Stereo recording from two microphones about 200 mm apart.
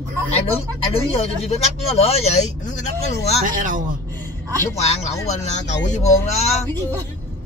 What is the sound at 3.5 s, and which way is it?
Speech, 40° right (ahead or behind).